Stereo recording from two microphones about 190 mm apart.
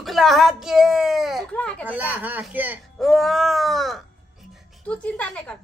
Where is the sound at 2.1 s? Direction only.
10° right (ahead or behind).